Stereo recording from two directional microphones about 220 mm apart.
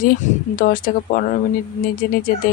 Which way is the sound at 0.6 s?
40° left (ahead or behind).